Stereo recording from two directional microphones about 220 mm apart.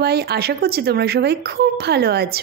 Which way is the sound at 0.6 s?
45° right (ahead or behind).